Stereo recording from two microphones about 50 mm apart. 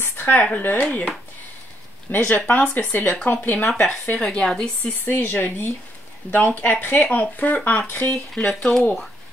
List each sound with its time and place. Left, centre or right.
0.0 s a sound: left
0.6 s speech: left
2.0 s speech: left
3.6 s a woman's voice: centre
5.0 s speech: left
8.5 s speech: centre